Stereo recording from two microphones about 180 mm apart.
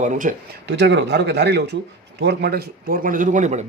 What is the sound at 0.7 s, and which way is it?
Speech, 70° right (ahead or behind).